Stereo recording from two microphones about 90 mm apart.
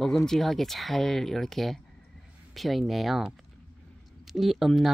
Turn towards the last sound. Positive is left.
turn(degrees=0)  # may be behind; listen again after turning